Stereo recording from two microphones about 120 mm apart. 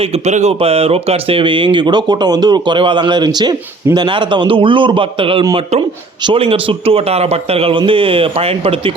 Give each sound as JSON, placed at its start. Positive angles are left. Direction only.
{"t": 0.0, "sound": "speech", "side_deg": -65}